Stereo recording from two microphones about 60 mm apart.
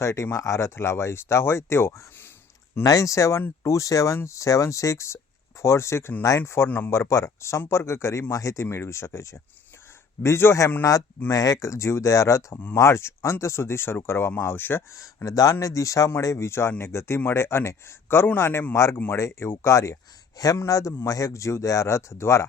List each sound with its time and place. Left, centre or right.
0.0 s speech: left
0.8 s speech: left
2.8 s speech: left
6.7 s speech: left
6.9 s speech: left
8.3 s speech: left
8.6 s speech: left
10.8 s speech: left
12.7 s speech: left
14.9 s speech: left
16.5 s speech: left
18.9 s speech: left
19.2 s speech: left
20.6 s speech: left